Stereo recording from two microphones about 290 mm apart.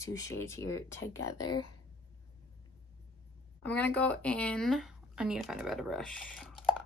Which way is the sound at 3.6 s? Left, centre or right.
Centre.